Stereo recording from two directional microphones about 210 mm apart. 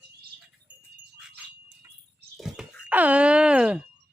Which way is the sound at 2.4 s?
5° right (ahead or behind).